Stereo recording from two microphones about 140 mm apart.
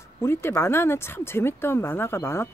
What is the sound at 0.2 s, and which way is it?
Speech, 15° left (ahead or behind).